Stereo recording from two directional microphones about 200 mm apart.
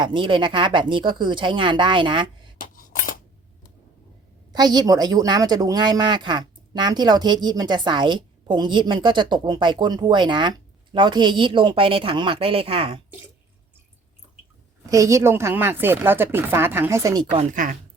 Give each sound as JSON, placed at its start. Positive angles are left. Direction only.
{"t": 0.0, "sound": "speech", "side_deg": -25}
{"t": 2.6, "sound": "cutlery", "side_deg": 45}
{"t": 4.5, "sound": "speech", "side_deg": -20}
{"t": 14.8, "sound": "speech", "side_deg": -15}
{"t": 17.3, "sound": "speech", "side_deg": -40}